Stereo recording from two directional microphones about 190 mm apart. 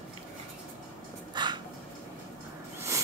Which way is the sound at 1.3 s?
25° right (ahead or behind).